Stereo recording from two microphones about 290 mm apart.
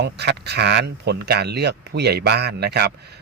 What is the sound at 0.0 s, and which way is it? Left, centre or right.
Speech, right.